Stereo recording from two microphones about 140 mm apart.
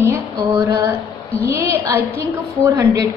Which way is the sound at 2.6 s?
20° right (ahead or behind).